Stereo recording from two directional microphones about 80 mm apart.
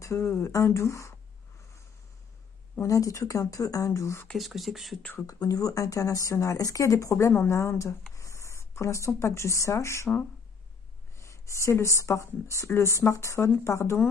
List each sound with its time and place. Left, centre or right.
0.0 s speech: left
2.8 s speech: left
4.3 s speech: centre
5.2 s speech: left
11.1 s speech: left